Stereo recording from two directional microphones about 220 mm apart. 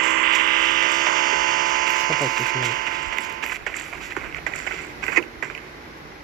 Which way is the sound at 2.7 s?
40° right (ahead or behind).